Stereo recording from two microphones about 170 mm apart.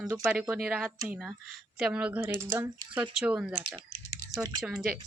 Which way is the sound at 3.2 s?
10° right (ahead or behind).